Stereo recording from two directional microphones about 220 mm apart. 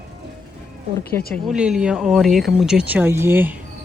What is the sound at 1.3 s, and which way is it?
Speech, 5° right (ahead or behind).